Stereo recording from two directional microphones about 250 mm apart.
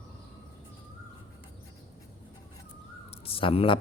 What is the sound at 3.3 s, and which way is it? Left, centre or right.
Speech, left.